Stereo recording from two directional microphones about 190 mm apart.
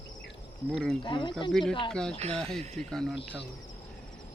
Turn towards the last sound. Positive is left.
turn(degrees=5)  # may be behind; listen again after turning